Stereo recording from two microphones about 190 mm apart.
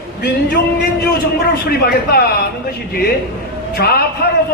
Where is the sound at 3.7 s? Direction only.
55° left (ahead or behind).